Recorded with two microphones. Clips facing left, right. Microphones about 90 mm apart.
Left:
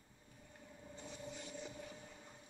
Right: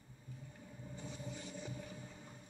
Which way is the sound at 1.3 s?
15° right (ahead or behind).